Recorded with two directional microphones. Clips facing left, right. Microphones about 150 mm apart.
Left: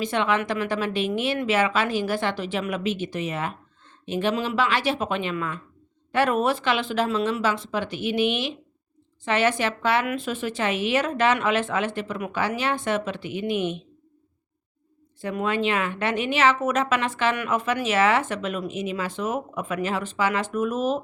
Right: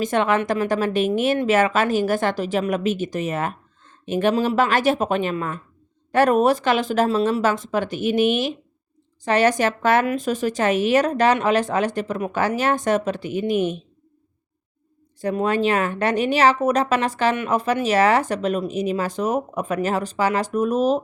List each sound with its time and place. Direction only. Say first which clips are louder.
0.0 s speech: right 4 dB; 45° right (ahead or behind)
15.2 s speech: right 5 dB; 40° right (ahead or behind)